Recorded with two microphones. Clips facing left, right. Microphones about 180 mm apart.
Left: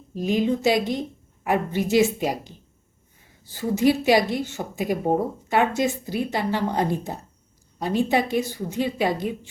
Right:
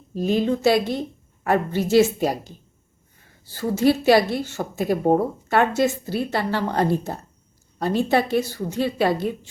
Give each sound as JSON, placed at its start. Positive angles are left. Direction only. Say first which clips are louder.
{"t": 0.2, "sound": "a woman's voice", "louder": "right 2 dB", "side_deg": 15}
{"t": 3.4, "sound": "a woman's voice", "louder": "right 1 dB", "side_deg": 15}